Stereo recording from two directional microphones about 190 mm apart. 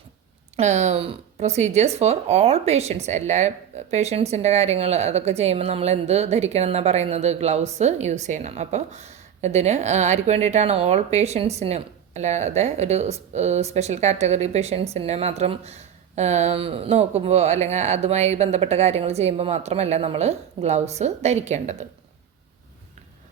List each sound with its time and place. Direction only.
0.5 s speech: 35° right (ahead or behind)